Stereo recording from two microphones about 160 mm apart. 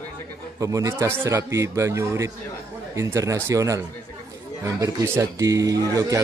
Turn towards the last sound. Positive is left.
turn(degrees=-25)  # may be behind; listen again after turning